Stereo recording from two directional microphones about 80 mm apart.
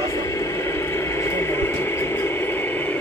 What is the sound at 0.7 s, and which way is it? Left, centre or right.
Radio, left.